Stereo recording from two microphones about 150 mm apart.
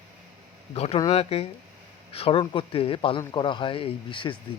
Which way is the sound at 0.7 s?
40° left (ahead or behind).